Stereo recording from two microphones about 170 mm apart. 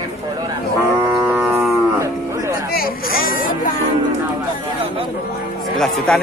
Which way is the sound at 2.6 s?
60° left (ahead or behind).